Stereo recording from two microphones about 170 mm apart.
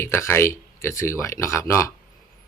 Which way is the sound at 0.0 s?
15° left (ahead or behind).